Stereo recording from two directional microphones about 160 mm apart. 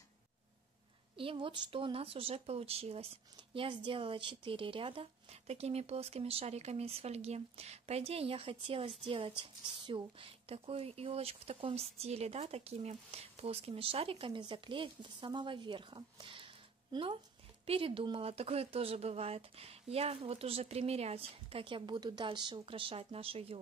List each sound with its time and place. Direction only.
1.1 s speech: 35° right (ahead or behind)